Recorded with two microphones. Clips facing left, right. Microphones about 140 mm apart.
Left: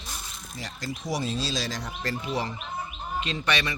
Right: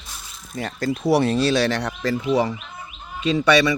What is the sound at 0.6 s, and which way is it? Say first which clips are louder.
Speech: right 11 dB; 55° right (ahead or behind).